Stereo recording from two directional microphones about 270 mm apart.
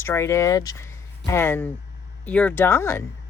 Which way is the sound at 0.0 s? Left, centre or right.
Centre.